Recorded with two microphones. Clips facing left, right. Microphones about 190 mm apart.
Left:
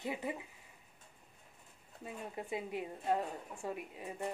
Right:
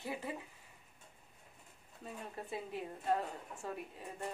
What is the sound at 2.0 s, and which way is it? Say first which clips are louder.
A woman's voice: left 2 dB; 15° left (ahead or behind).